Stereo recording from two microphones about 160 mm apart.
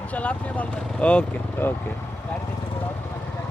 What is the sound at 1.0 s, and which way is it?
Speech, 10° left (ahead or behind).